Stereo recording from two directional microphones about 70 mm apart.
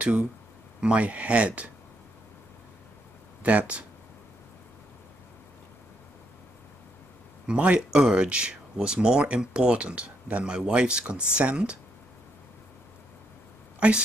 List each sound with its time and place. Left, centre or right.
0.0 s speech: centre
3.4 s speech: centre
7.4 s speech: centre
13.7 s speech: centre